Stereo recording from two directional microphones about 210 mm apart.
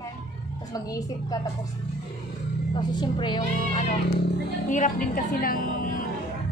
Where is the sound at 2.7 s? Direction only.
20° left (ahead or behind).